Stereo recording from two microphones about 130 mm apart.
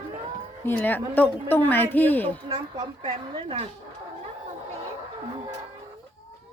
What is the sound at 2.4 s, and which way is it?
A woman's voice, 35° right (ahead or behind).